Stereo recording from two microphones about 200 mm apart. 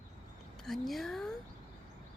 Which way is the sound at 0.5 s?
Centre (ahead or behind).